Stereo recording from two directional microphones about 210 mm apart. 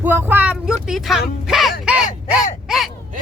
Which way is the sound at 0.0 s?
10° right (ahead or behind).